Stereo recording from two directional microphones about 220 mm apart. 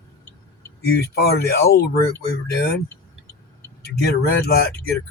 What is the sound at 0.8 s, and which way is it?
Speech, 45° left (ahead or behind).